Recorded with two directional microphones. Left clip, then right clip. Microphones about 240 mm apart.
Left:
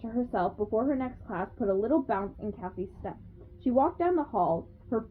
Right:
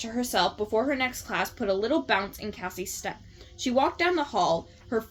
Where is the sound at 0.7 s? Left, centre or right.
Centre.